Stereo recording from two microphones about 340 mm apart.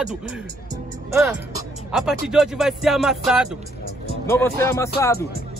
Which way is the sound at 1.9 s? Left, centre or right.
Centre.